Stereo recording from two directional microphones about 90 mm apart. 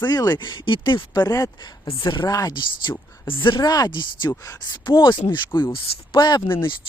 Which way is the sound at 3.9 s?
60° left (ahead or behind).